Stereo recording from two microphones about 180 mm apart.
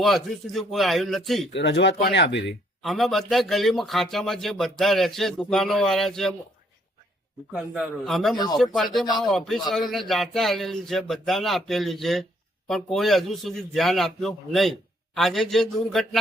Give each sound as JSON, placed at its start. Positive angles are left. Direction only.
{"t": 0.0, "sound": "a man's voice", "side_deg": 0}
{"t": 1.5, "sound": "speech", "side_deg": 75}
{"t": 2.8, "sound": "a man's voice", "side_deg": 0}
{"t": 7.5, "sound": "a man's voice", "side_deg": -5}